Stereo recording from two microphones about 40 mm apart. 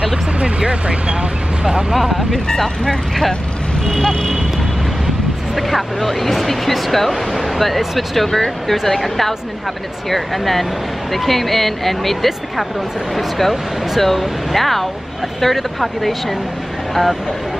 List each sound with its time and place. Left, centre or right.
0.4 s speech: right
2.0 s speech: centre
2.4 s speech: centre
5.6 s speech: centre